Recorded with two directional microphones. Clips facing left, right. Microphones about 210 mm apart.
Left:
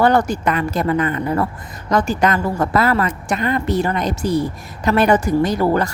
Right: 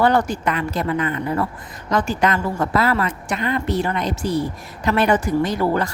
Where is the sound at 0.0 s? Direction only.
45° left (ahead or behind).